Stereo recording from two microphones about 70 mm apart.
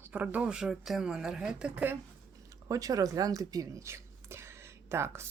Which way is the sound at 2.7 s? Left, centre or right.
Right.